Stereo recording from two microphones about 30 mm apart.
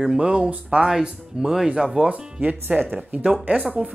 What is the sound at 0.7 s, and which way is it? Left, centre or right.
Speech, right.